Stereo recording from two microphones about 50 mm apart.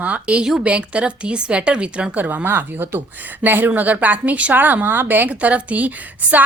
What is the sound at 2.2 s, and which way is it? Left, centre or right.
A woman's voice, right.